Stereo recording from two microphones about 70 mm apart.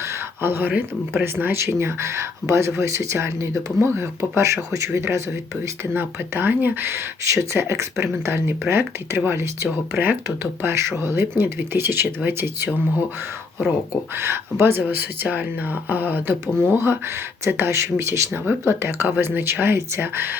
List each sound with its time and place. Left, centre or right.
0.0 s a sound: right
0.8 s speech: right
14.2 s speech: right